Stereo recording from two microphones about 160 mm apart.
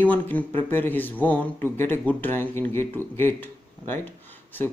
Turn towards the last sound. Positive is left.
turn(degrees=10)  # may be behind; listen again after turning